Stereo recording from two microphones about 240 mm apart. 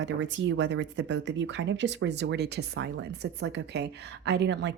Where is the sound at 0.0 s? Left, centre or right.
Right.